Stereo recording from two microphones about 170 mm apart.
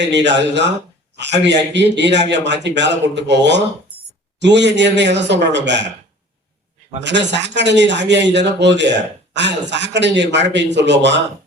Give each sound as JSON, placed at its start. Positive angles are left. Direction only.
{"t": 0.0, "sound": "a man's voice", "side_deg": -90}
{"t": 7.3, "sound": "a man's voice", "side_deg": -90}